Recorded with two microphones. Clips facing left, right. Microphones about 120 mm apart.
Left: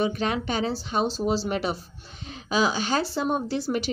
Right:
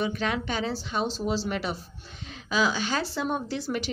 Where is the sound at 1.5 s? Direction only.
25° left (ahead or behind).